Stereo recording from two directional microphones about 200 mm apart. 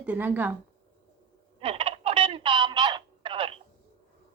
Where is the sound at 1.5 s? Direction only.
30° right (ahead or behind).